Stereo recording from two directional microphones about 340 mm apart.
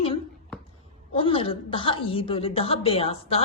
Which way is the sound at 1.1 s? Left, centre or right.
Centre.